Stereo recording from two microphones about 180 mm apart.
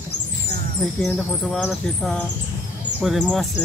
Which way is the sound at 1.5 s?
Centre (ahead or behind).